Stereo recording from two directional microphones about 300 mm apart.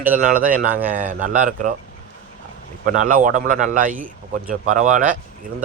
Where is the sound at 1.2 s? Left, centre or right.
Right.